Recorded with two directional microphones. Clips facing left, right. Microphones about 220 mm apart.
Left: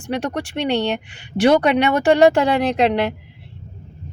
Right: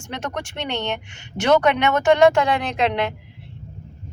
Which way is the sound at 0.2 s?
35° left (ahead or behind).